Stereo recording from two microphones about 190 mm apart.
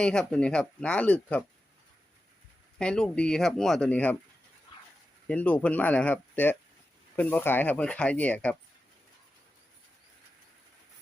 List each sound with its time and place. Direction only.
0.0 s speech: 5° left (ahead or behind)
2.7 s speech: 5° left (ahead or behind)
5.3 s speech: 10° left (ahead or behind)